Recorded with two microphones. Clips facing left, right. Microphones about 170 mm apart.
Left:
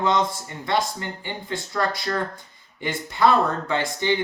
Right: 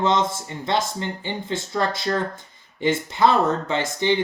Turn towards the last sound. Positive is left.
turn(degrees=-20)  # may be behind; listen again after turning